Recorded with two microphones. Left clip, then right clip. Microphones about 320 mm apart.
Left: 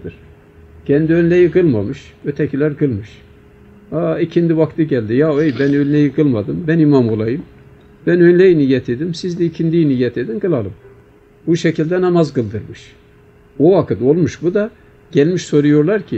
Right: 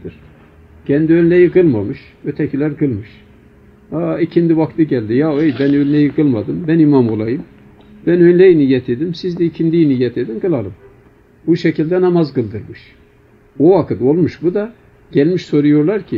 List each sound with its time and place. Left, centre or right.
0.8 s speech: left